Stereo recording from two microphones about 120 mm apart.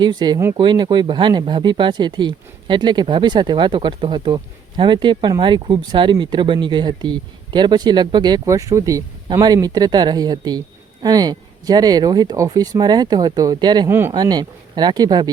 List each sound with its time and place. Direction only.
0.0 s speech: 35° right (ahead or behind)
0.3 s speech: 25° right (ahead or behind)
0.6 s speech: 40° right (ahead or behind)